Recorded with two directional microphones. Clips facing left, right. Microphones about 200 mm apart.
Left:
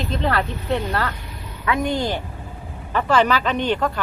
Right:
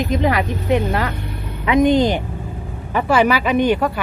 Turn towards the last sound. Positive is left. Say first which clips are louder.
# right 5 dB
turn(degrees=-10)  # may be behind; listen again after turning